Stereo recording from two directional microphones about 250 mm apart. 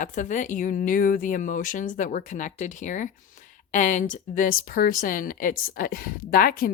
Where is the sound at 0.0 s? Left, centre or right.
Left.